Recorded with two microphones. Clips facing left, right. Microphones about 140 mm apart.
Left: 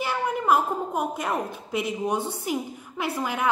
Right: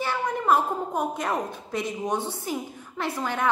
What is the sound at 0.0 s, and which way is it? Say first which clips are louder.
A woman's voice: left 1 dB; 10° left (ahead or behind).